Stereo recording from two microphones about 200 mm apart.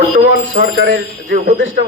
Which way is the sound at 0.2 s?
50° right (ahead or behind).